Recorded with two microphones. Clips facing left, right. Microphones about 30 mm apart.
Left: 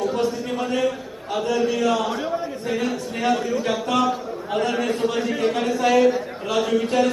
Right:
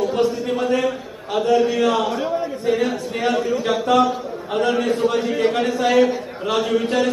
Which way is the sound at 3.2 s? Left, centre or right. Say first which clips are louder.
Right 1 dB; centre.